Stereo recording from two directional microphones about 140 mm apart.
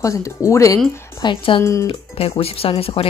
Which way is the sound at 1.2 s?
35° left (ahead or behind).